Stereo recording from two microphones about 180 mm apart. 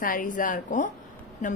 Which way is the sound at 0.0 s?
50° left (ahead or behind).